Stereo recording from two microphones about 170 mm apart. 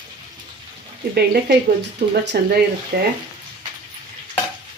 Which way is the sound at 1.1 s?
70° right (ahead or behind).